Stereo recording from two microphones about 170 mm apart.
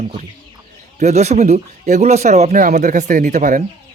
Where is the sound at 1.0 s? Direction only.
40° right (ahead or behind).